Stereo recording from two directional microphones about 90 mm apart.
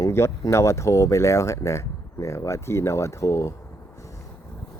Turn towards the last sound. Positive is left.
turn(degrees=35)  # may be behind; listen again after turning